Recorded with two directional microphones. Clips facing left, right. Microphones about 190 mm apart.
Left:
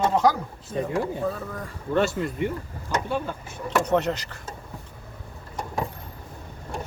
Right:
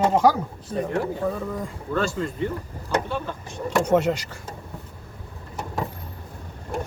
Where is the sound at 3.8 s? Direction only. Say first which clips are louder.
Right 5 dB; 10° right (ahead or behind).